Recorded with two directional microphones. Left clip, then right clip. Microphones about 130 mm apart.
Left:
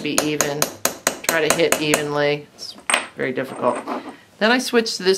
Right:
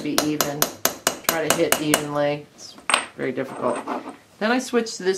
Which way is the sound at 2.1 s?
30° left (ahead or behind).